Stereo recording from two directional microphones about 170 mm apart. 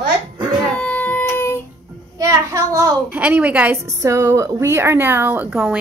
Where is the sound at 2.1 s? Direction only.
20° right (ahead or behind).